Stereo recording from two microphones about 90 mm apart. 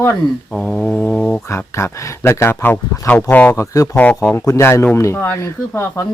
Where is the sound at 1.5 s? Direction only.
30° left (ahead or behind).